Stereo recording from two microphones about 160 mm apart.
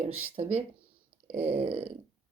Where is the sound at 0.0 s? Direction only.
45° right (ahead or behind).